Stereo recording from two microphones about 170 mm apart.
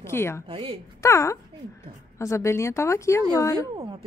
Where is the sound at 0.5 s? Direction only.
30° right (ahead or behind).